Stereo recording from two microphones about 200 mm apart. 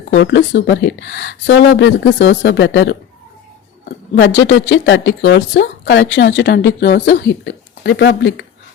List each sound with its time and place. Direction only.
0.1 s speech: 60° left (ahead or behind)